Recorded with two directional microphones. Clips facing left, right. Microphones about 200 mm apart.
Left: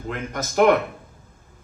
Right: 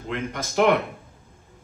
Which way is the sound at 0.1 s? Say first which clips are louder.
Even; 45° left (ahead or behind).